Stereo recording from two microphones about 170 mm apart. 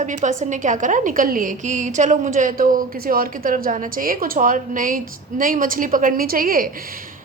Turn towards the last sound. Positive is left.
turn(degrees=-55)  # may be behind; listen again after turning